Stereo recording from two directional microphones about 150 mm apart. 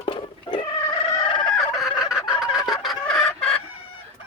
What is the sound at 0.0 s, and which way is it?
Cat, 35° left (ahead or behind).